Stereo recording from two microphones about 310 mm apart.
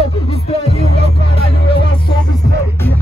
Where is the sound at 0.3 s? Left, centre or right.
Centre.